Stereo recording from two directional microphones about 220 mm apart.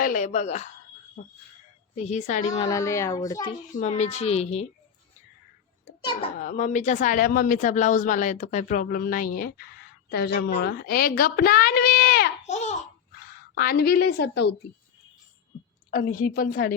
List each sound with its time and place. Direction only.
0.0 s speech: 35° left (ahead or behind)
2.0 s speech: 30° left (ahead or behind)
2.6 s a child's voice: 15° left (ahead or behind)
3.7 s speech: 30° left (ahead or behind)
6.0 s a child's voice: 20° left (ahead or behind)
6.4 s a woman's voice: 35° left (ahead or behind)
12.5 s laughter: 30° left (ahead or behind)
13.6 s a woman's voice: 45° left (ahead or behind)
15.9 s a woman's voice: 45° left (ahead or behind)